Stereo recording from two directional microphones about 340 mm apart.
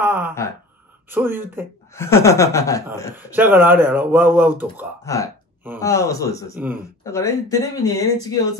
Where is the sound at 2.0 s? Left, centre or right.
Centre.